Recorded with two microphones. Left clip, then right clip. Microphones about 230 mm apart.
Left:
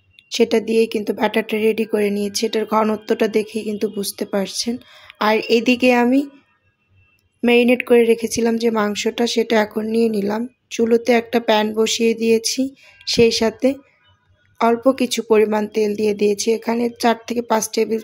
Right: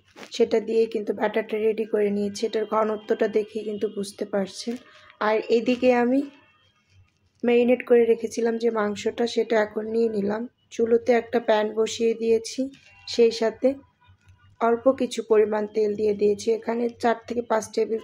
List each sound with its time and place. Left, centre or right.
0.3 s speech: left
7.4 s speech: left